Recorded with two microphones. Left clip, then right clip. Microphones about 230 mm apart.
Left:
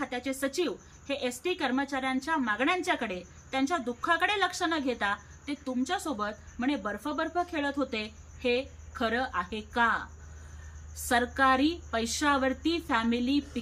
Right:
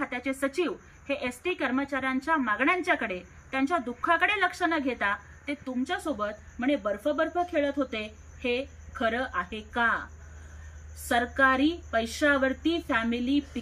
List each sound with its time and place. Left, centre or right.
0.0 s a woman's voice: centre
11.1 s a woman's voice: centre